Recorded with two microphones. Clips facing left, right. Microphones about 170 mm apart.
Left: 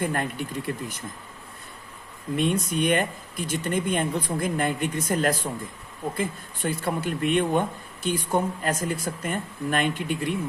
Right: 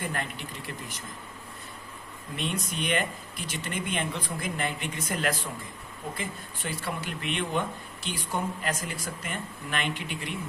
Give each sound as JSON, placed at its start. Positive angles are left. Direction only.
{"t": 0.0, "sound": "speech", "side_deg": 50}
{"t": 2.3, "sound": "speech", "side_deg": 50}